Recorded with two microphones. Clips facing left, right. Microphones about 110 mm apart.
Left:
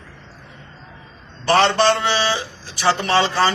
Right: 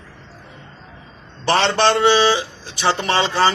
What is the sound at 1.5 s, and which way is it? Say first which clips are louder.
A man's voice: left 1 dB; 20° right (ahead or behind).